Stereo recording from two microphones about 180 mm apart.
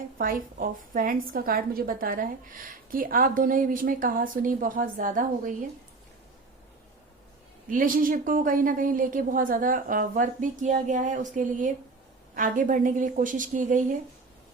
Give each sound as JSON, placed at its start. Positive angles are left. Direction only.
{"t": 0.2, "sound": "a woman's voice", "side_deg": -50}
{"t": 7.7, "sound": "a woman's voice", "side_deg": -50}